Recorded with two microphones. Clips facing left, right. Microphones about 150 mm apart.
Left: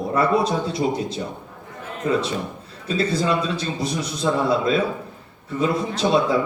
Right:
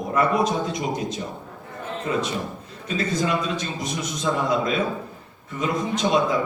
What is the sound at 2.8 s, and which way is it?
Speech, 30° left (ahead or behind).